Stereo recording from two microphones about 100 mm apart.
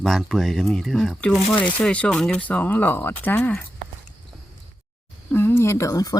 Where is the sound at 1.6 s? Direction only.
15° left (ahead or behind).